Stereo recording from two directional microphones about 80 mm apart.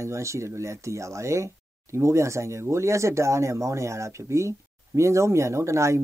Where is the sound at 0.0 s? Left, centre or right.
Right.